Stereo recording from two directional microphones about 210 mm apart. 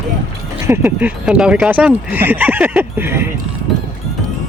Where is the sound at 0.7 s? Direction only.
10° right (ahead or behind).